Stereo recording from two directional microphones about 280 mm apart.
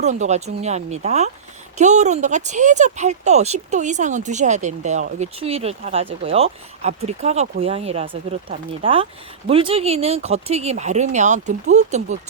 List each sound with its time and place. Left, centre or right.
0.0 s speech: right